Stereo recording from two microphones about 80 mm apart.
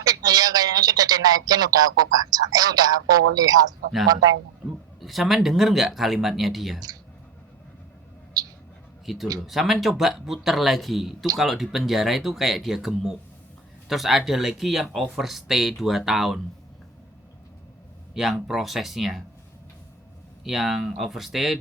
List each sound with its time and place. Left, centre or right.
0.0 s speech: right
4.9 s speech: centre
9.1 s speech: centre
18.1 s speech: centre
20.4 s speech: centre